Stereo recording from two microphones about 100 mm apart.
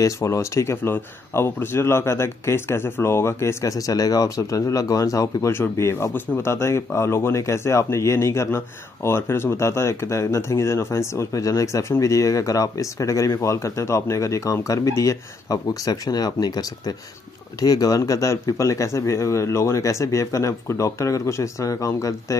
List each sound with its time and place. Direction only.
0.0 s speech: 30° left (ahead or behind)